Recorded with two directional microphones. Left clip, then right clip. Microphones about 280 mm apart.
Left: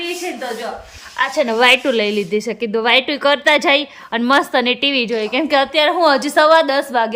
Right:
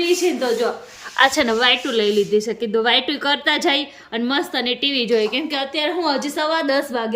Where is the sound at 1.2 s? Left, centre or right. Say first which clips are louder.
Right 4 dB; right.